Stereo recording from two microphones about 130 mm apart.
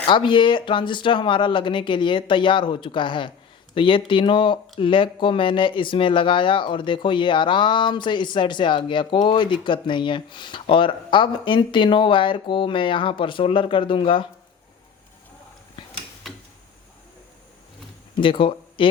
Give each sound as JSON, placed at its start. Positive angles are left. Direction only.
{"t": 0.1, "sound": "speech", "side_deg": 40}
{"t": 16.2, "sound": "a sound", "side_deg": 0}
{"t": 18.2, "sound": "speech", "side_deg": 40}